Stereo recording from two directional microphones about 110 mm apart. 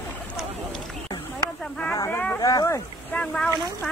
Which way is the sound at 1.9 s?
30° left (ahead or behind).